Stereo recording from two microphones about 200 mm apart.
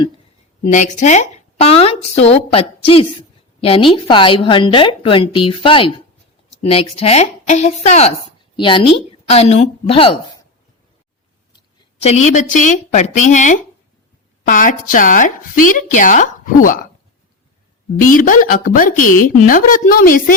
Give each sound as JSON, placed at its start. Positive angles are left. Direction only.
{"t": 0.6, "sound": "a woman's voice", "side_deg": 40}
{"t": 12.0, "sound": "a woman's voice", "side_deg": 35}
{"t": 18.0, "sound": "a woman's voice", "side_deg": 45}